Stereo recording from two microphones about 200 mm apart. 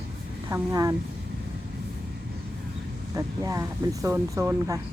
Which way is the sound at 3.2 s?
15° right (ahead or behind).